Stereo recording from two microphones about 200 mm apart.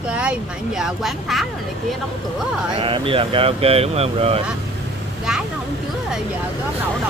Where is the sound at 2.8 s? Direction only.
25° right (ahead or behind).